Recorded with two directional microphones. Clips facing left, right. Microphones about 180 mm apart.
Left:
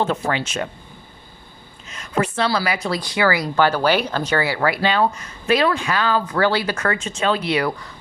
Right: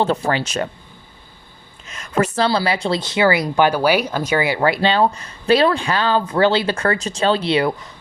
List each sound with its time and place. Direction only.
0.0 s speech: 35° right (ahead or behind)
2.1 s speech: 40° right (ahead or behind)